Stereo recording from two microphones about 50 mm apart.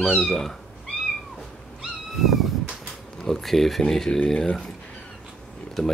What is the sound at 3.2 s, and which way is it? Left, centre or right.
Speech, centre.